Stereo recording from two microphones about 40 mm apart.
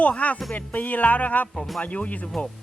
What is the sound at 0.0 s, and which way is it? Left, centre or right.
Speech, left.